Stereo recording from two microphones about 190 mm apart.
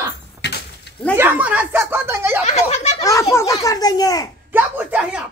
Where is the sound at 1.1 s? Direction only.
10° right (ahead or behind).